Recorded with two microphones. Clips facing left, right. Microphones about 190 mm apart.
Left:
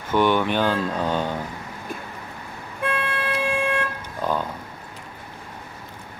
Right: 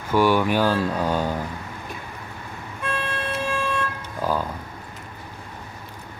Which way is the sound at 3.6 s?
55° left (ahead or behind).